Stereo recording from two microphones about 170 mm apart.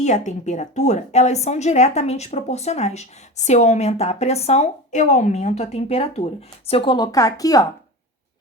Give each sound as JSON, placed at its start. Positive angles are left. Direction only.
{"t": 0.0, "sound": "a woman's voice", "side_deg": 45}